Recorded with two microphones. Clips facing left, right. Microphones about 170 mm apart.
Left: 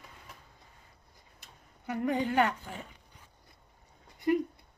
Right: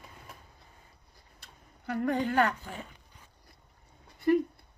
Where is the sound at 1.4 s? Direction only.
15° left (ahead or behind).